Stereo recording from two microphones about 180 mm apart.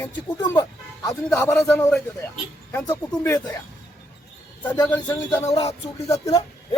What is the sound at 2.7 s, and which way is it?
Speech, 15° left (ahead or behind).